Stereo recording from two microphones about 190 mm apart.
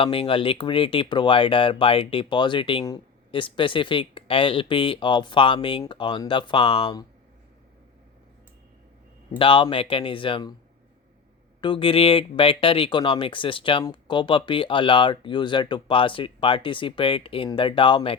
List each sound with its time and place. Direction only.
0.0 s speech: 30° left (ahead or behind)
9.4 s speech: 25° left (ahead or behind)
11.6 s speech: 25° left (ahead or behind)